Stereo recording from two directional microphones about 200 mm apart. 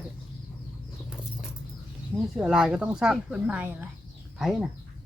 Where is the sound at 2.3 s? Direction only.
5° right (ahead or behind).